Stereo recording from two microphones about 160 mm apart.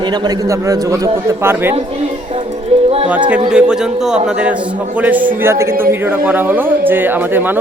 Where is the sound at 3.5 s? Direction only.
5° right (ahead or behind).